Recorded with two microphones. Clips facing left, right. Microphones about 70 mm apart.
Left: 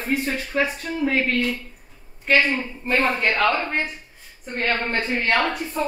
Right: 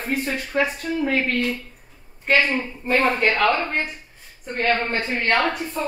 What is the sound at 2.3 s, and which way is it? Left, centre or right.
A woman's voice, centre.